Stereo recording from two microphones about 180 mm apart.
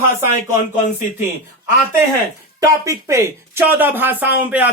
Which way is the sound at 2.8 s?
15° right (ahead or behind).